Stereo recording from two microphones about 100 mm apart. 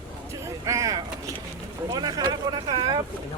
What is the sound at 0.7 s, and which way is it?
Speech, 35° right (ahead or behind).